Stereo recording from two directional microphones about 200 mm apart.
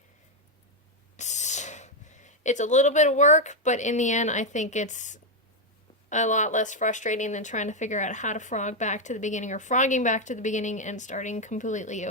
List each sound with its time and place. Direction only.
1.1 s speech: 35° left (ahead or behind)